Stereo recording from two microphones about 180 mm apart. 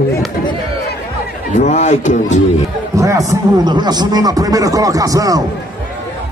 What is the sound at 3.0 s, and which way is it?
Speech, 20° right (ahead or behind).